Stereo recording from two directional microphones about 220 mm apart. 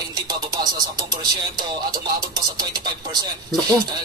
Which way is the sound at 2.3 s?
20° right (ahead or behind).